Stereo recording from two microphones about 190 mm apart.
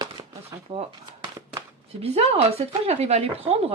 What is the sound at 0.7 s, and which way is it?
Speech, 35° right (ahead or behind).